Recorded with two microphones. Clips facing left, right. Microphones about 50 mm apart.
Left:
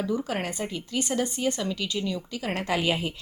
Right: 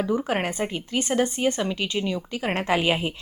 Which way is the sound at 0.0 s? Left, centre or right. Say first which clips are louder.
Right 4 dB; right.